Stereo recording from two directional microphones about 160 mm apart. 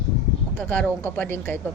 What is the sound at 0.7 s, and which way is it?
Speech, 10° left (ahead or behind).